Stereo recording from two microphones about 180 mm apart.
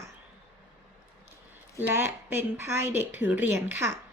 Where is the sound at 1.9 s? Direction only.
10° right (ahead or behind).